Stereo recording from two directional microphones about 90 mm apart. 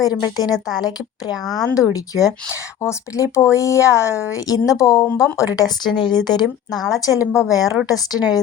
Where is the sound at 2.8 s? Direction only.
35° left (ahead or behind); by 6.8 s 50° left (ahead or behind).